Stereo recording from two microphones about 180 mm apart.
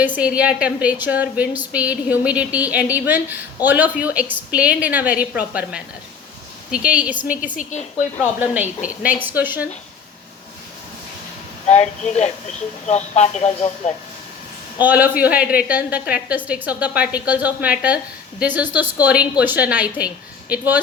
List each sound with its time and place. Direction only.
0.0 s a woman's voice: 10° right (ahead or behind)
6.7 s a woman's voice: 5° right (ahead or behind)
7.5 s speech: 45° left (ahead or behind)
8.2 s a woman's voice: 10° right (ahead or behind)
11.7 s speech: 35° left (ahead or behind)
14.8 s a woman's voice: 10° right (ahead or behind)